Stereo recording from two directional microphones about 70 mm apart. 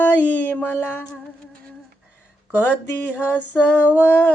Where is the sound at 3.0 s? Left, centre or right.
Left.